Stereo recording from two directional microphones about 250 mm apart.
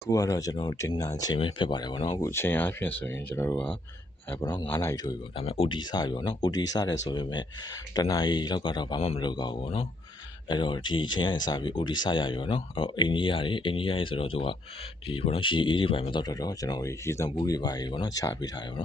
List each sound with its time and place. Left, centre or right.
0.1 s speech: centre
5.4 s speech: left